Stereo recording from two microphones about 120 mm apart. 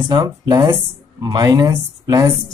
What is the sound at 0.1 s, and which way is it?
Speech, 35° right (ahead or behind).